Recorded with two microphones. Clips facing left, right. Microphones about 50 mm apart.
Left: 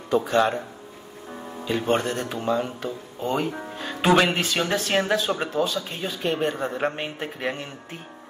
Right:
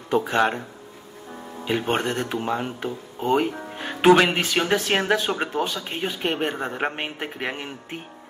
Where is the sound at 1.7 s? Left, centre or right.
Right.